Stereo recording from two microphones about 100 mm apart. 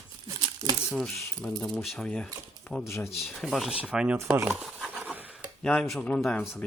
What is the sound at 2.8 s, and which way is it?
Speech, 25° left (ahead or behind).